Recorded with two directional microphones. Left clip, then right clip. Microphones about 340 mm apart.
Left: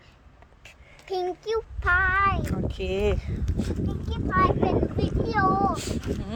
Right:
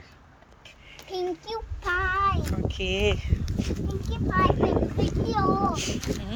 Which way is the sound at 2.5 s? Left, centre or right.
Centre.